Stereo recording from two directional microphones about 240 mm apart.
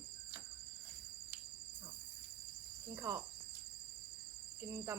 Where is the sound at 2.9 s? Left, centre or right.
Centre.